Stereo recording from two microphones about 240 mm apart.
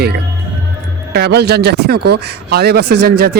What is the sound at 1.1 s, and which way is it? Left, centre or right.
Speech, right.